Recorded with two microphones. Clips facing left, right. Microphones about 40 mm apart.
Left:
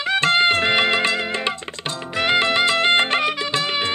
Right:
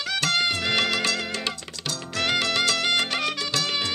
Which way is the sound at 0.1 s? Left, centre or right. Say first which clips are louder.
Left 8 dB; left.